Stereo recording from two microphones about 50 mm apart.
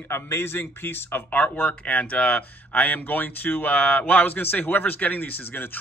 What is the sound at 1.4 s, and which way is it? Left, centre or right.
Speech, left.